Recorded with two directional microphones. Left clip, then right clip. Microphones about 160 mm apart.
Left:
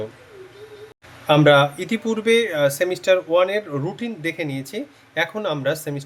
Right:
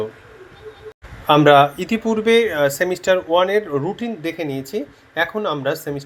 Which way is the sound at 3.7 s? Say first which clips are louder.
Right 5 dB; 20° left (ahead or behind).